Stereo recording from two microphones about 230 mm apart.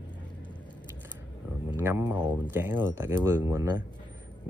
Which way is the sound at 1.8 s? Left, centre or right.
Centre.